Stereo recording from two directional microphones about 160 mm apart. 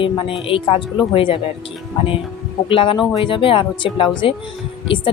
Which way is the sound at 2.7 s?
35° left (ahead or behind).